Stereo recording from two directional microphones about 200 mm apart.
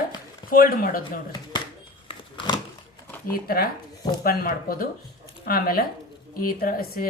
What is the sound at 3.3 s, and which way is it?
A woman's voice, 50° left (ahead or behind).